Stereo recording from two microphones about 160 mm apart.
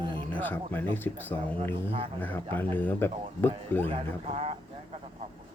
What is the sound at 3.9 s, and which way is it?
Speech, 40° right (ahead or behind).